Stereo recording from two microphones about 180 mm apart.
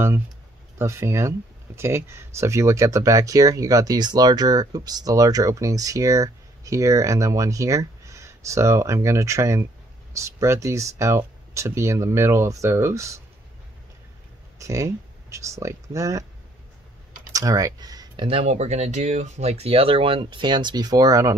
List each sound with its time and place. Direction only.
0.7 s speech: 15° right (ahead or behind)
14.6 s speech: 15° right (ahead or behind)
17.3 s a sound: 20° right (ahead or behind)
18.2 s speech: 35° right (ahead or behind); by 21.4 s 20° right (ahead or behind)